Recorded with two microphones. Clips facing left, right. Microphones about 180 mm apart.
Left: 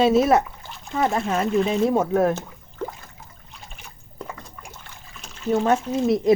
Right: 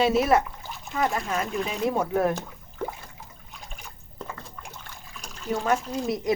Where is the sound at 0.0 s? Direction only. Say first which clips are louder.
Left 4 dB; 25° left (ahead or behind).